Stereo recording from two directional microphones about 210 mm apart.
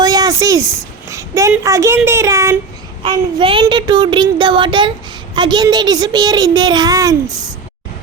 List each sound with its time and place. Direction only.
0.0 s a woman's voice: 15° right (ahead or behind)